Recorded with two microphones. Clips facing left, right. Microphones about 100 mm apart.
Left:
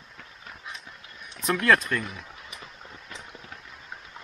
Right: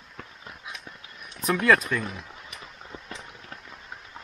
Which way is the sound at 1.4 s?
5° right (ahead or behind).